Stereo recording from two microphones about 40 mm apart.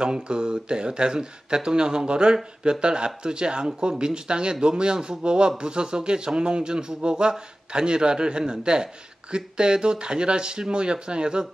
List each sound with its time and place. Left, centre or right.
0.0 s speech: right